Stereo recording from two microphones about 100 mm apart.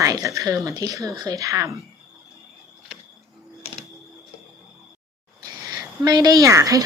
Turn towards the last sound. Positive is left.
turn(degrees=-35)  # may be behind; listen again after turning